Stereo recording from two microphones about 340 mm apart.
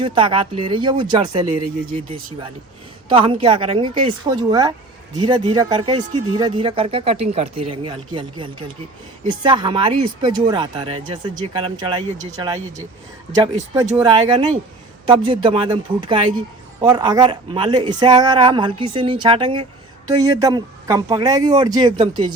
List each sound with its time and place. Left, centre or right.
0.0 s speech: centre